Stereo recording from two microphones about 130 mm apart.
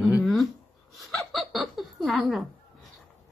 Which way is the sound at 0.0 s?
Centre (ahead or behind).